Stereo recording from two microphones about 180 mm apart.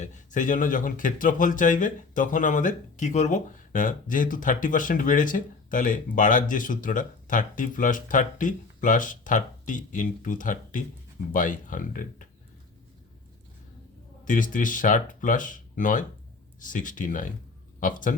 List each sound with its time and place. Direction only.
0.0 s speech: 45° left (ahead or behind)
14.3 s speech: 45° left (ahead or behind)